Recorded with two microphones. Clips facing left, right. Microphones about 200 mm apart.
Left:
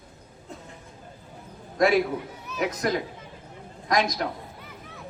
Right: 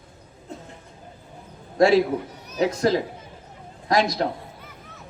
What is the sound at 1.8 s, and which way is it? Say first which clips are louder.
A man's voice: right 4 dB; 30° right (ahead or behind).